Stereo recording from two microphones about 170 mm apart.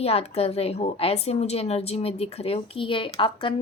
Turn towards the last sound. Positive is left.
turn(degrees=30)  # may be behind; listen again after turning